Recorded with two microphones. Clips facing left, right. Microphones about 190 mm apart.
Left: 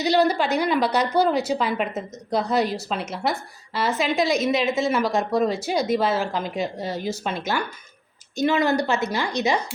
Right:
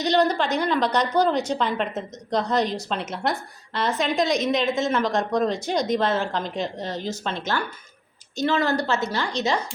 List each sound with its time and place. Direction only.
0.0 s a woman's voice: 10° left (ahead or behind)